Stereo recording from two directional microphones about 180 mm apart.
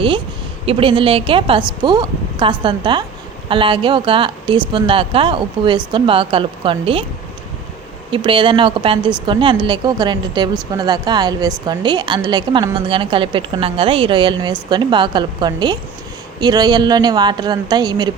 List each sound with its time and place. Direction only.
0.6 s a woman's voice: 30° right (ahead or behind)
8.1 s a woman's voice: 30° right (ahead or behind)